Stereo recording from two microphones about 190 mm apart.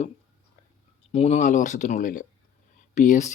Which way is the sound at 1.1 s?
35° left (ahead or behind).